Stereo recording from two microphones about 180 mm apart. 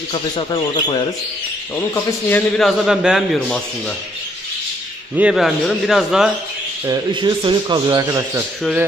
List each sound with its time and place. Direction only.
0.1 s speech: 25° left (ahead or behind)
2.0 s a man's voice: 10° left (ahead or behind)
5.1 s a man's voice: 5° right (ahead or behind)
6.9 s speech: 25° right (ahead or behind)